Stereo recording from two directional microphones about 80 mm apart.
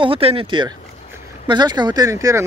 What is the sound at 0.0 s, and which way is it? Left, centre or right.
Speech, right.